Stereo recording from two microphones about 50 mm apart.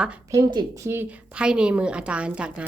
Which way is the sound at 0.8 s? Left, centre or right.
Right.